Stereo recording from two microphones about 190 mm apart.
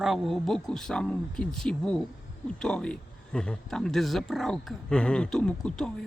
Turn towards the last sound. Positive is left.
turn(degrees=5)  # may be behind; listen again after turning